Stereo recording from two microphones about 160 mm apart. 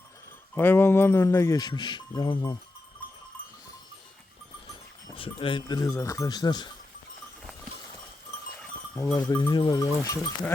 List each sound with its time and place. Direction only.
0.5 s speech: 10° left (ahead or behind)
5.1 s speech: 35° left (ahead or behind)
9.3 s speech: 25° left (ahead or behind)